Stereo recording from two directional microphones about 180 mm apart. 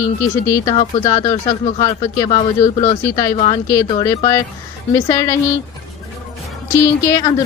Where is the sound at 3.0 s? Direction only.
15° left (ahead or behind).